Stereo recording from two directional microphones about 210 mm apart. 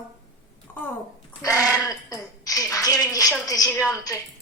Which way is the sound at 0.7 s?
10° left (ahead or behind).